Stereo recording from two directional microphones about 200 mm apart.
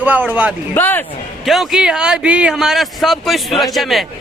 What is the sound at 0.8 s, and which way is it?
Speech, 10° left (ahead or behind).